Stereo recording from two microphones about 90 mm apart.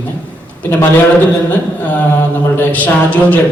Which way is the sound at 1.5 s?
15° left (ahead or behind).